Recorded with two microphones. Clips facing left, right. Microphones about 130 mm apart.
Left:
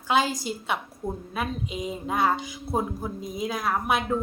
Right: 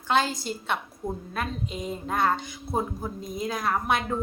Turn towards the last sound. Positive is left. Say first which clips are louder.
# left 1 dB
turn(degrees=5)  # may be behind; listen again after turning